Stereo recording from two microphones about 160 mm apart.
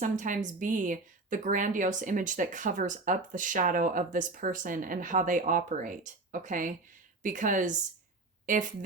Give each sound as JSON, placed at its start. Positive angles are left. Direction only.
{"t": 0.0, "sound": "speech", "side_deg": -50}